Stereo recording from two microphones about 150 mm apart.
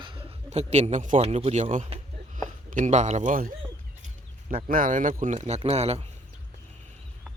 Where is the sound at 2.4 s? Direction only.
60° right (ahead or behind).